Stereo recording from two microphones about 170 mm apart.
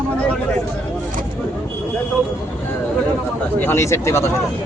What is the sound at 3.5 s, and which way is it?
Speech, 15° left (ahead or behind).